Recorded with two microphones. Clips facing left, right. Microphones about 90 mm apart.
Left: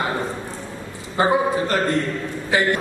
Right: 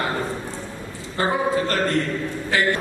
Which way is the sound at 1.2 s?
20° left (ahead or behind).